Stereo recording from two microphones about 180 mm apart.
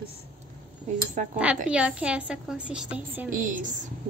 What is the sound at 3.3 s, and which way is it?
Speech, 45° right (ahead or behind).